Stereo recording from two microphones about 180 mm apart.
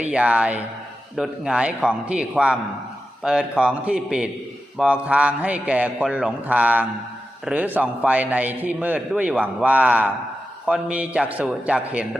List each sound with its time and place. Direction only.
0.0 s a man's voice: 5° right (ahead or behind)